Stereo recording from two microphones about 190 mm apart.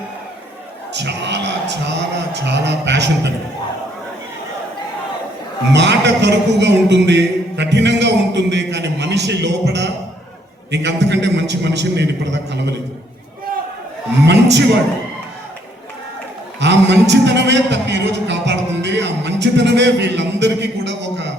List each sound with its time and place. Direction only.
0.9 s a man's voice: 65° right (ahead or behind)
5.7 s a man's voice: 65° right (ahead or behind)
14.3 s a man's voice: 65° right (ahead or behind)
16.6 s a man's voice: 65° right (ahead or behind)